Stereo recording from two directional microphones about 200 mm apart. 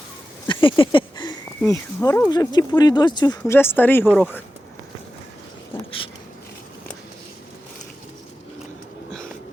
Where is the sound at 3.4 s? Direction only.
10° left (ahead or behind).